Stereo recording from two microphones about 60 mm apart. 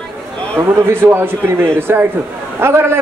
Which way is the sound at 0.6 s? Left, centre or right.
Right.